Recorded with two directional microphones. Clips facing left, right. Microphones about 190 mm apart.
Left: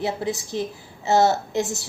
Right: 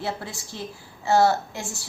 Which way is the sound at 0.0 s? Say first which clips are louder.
Left 6 dB; 20° left (ahead or behind).